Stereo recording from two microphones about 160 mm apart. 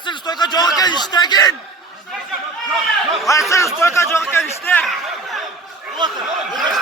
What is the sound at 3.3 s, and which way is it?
A man's voice, 20° left (ahead or behind).